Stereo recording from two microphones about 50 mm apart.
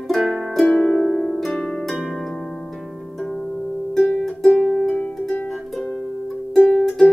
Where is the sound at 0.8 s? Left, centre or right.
Centre.